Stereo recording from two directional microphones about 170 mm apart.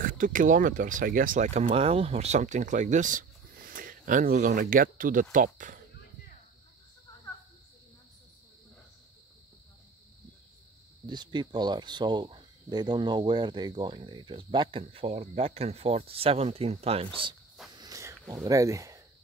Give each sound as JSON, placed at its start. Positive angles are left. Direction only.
{"t": 0.0, "sound": "speech", "side_deg": -50}
{"t": 11.1, "sound": "speech", "side_deg": -25}
{"t": 17.7, "sound": "a sound", "side_deg": -20}
{"t": 18.3, "sound": "speech", "side_deg": -20}